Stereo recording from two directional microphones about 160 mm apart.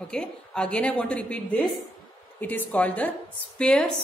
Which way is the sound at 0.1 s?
5° left (ahead or behind).